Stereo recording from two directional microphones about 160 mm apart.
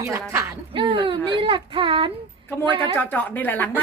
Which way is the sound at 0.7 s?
30° right (ahead or behind).